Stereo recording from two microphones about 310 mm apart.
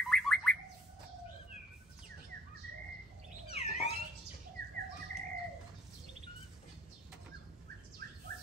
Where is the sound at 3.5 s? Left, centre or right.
Centre.